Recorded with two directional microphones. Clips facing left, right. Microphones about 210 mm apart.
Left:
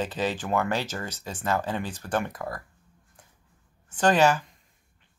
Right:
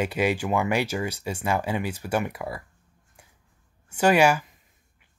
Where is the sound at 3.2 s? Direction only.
10° right (ahead or behind).